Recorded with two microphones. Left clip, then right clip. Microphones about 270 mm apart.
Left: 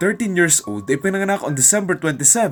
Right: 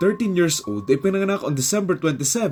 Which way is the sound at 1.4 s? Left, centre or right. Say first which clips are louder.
Left 4 dB; centre.